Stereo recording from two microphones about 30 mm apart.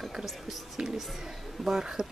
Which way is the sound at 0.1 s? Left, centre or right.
Centre.